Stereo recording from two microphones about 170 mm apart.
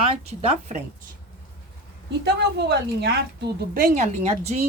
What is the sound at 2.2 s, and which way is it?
A woman's voice, 85° right.